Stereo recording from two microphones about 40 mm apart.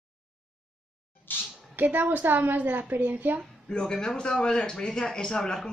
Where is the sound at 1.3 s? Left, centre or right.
Left.